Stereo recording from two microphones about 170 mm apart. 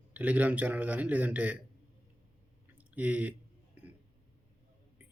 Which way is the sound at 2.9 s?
10° right (ahead or behind).